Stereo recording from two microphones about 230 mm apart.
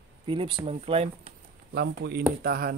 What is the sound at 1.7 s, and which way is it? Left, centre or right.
Speech, right.